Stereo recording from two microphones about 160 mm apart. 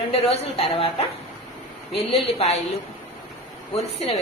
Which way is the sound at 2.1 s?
40° left (ahead or behind).